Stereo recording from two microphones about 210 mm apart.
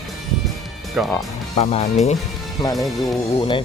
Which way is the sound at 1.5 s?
30° left (ahead or behind).